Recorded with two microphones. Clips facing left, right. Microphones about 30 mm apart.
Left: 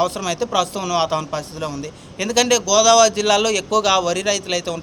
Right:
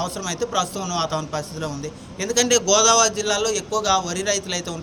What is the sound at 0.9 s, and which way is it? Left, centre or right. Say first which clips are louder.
Speech: left 5 dB; left.